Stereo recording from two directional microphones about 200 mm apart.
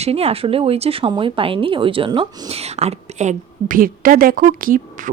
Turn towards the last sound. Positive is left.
turn(degrees=-45)  # may be behind; listen again after turning